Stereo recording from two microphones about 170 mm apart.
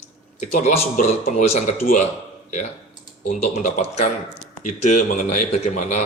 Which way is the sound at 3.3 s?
45° left (ahead or behind).